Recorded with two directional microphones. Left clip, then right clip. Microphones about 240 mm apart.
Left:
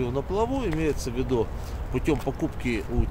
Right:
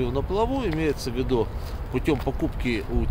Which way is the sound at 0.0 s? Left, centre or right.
Centre.